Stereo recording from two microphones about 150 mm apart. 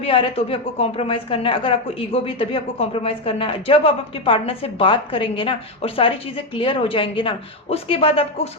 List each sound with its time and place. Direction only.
0.0 s a woman's voice: 40° left (ahead or behind)